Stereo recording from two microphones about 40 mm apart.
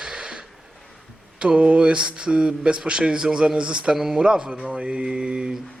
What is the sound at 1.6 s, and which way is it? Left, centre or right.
Speech, right.